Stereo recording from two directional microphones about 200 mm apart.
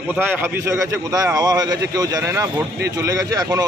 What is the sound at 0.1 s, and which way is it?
A man's voice, 10° right (ahead or behind).